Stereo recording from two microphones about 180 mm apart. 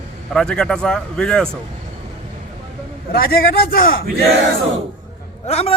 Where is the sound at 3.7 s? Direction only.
55° left (ahead or behind).